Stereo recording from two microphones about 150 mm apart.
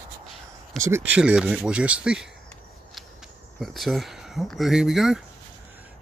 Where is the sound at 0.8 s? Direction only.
15° right (ahead or behind).